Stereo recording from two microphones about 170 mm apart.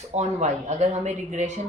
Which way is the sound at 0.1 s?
40° right (ahead or behind).